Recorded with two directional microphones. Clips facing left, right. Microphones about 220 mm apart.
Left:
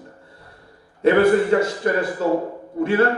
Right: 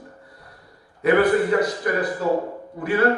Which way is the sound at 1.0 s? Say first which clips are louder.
Left 2 dB; 25° left (ahead or behind).